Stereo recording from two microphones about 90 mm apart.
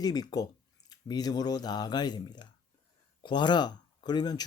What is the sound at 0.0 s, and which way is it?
Speech, 50° left (ahead or behind).